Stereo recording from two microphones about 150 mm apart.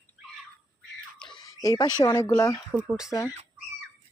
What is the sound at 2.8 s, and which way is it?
Speech, centre (ahead or behind).